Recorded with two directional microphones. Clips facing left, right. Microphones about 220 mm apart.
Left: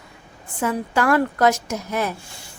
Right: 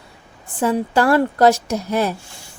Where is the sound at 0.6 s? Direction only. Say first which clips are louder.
Right 4 dB; 35° right (ahead or behind).